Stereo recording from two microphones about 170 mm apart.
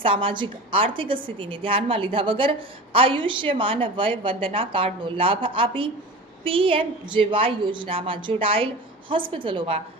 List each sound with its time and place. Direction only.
0.0 s a woman's voice: 30° right (ahead or behind)